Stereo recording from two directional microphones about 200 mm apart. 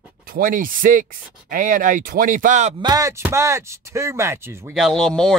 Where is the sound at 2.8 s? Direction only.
15° right (ahead or behind).